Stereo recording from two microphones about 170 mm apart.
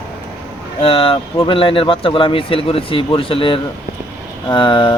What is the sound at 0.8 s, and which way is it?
A man's voice, 35° left (ahead or behind).